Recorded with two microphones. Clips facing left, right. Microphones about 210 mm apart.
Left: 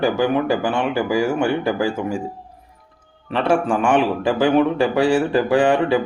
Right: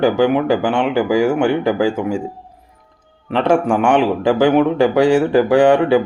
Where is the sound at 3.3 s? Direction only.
15° right (ahead or behind).